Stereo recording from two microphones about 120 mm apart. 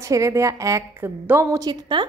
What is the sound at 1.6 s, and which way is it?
Speech, 40° right (ahead or behind).